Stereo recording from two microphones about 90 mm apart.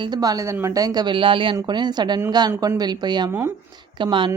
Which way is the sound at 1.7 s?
55° right (ahead or behind).